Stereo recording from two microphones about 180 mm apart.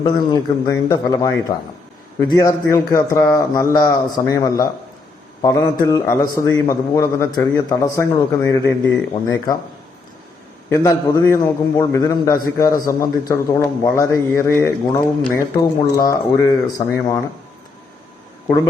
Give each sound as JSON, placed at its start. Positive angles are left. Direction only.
{"t": 0.0, "sound": "a man's voice", "side_deg": 25}
{"t": 10.7, "sound": "a man's voice", "side_deg": 15}